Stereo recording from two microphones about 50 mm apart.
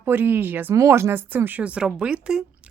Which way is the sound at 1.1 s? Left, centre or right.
Right.